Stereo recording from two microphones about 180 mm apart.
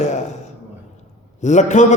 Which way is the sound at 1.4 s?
40° left (ahead or behind).